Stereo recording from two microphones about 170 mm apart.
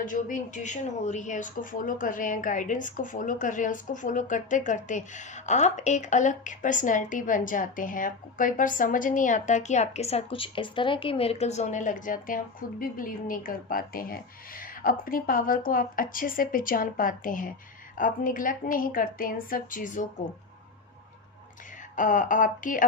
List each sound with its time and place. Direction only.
0.0 s speech: 50° left (ahead or behind)
21.9 s speech: 50° left (ahead or behind)